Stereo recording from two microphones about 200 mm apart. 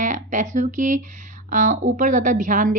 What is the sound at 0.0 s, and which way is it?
A woman's voice, 40° right (ahead or behind).